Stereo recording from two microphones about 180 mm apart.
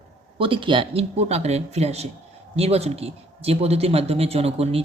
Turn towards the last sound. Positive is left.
turn(degrees=-35)  # may be behind; listen again after turning